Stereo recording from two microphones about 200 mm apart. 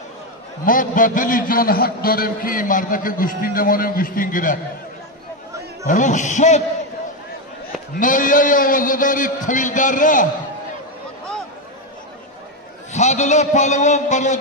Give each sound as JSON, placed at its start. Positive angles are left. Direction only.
{"t": 0.7, "sound": "a man's voice", "side_deg": 40}
{"t": 5.9, "sound": "a man's voice", "side_deg": 40}
{"t": 7.9, "sound": "a man's voice", "side_deg": 40}
{"t": 12.9, "sound": "a man's voice", "side_deg": 35}